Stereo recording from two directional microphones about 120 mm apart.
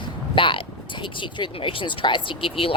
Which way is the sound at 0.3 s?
45° left (ahead or behind).